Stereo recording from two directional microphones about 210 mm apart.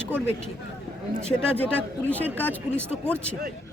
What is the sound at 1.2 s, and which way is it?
Speech, 5° left (ahead or behind).